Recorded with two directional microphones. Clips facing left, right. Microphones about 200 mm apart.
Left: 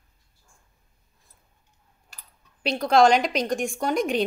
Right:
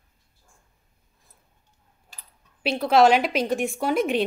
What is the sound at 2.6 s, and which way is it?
A woman's voice, 5° right (ahead or behind).